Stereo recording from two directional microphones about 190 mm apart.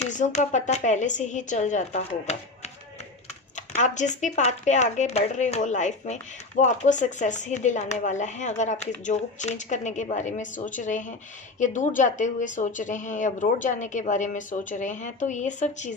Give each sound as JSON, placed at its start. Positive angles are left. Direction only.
{"t": 0.0, "sound": "speech", "side_deg": 40}
{"t": 3.8, "sound": "speech", "side_deg": 40}